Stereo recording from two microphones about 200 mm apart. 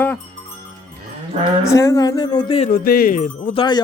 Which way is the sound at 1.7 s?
15° left (ahead or behind).